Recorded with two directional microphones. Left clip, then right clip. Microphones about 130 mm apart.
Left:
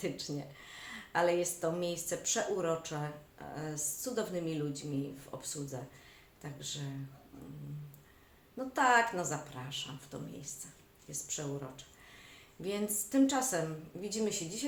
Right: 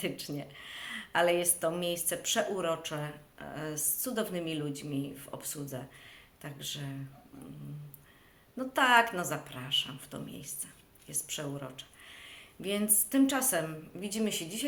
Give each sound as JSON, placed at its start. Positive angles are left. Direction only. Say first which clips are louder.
{"t": 0.0, "sound": "speech", "louder": "right 2 dB", "side_deg": -15}
{"t": 8.5, "sound": "speech", "louder": "right 3 dB", "side_deg": -15}